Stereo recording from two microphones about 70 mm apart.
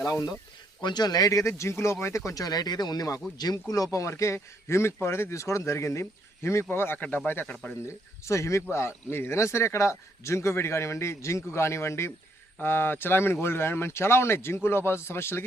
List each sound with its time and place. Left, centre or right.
0.0 s speech: left
0.8 s speech: left
2.4 s speech: left
3.9 s a man's voice: left
7.5 s speech: centre
8.3 s a man's voice: left